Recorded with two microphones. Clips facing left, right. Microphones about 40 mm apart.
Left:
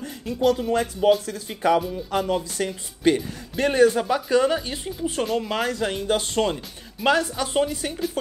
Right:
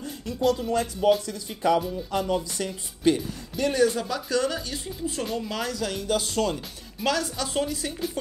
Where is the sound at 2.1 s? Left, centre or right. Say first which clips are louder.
Left 3 dB; left.